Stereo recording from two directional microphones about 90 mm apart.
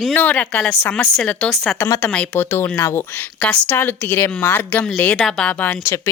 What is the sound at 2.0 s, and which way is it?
Speech, 10° left (ahead or behind).